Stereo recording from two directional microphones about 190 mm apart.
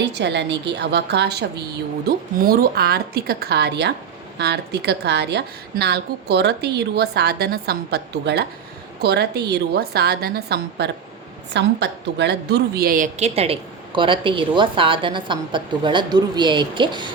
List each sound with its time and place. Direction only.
0.0 s a woman's voice: 65° right (ahead or behind); by 17.1 s 25° right (ahead or behind)